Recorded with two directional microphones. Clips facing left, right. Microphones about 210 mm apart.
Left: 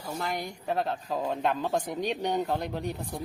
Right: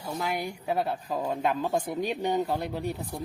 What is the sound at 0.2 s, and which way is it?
Speech, 5° right (ahead or behind).